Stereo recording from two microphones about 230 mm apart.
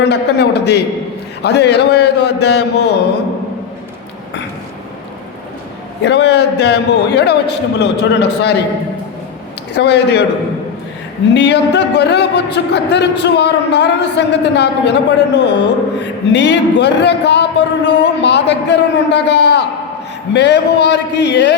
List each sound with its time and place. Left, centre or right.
0.1 s a man's voice: left
6.0 s a man's voice: left
9.7 s a man's voice: left
11.3 s a man's voice: left